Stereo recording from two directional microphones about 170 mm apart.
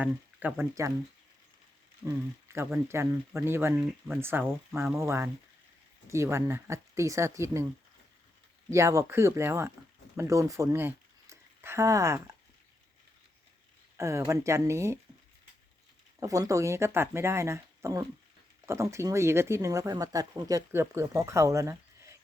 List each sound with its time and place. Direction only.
0.0 s speech: 10° right (ahead or behind)
2.0 s speech: 15° right (ahead or behind)
8.7 s speech: 20° right (ahead or behind)
13.9 s speech: 15° right (ahead or behind)
16.2 s speech: 20° right (ahead or behind)